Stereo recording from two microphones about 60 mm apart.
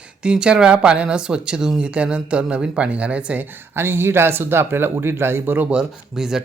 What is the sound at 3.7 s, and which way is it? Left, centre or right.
Speech, right.